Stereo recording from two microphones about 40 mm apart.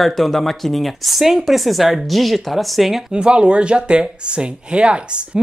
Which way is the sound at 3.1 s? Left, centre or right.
Right.